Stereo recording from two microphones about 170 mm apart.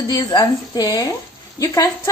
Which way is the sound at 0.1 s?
25° left (ahead or behind).